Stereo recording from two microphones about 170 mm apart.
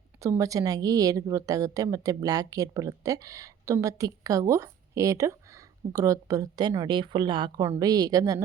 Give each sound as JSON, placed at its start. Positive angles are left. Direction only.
{"t": 0.2, "sound": "a woman's voice", "side_deg": -20}